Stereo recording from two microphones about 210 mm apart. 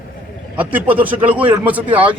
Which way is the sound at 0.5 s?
10° right (ahead or behind).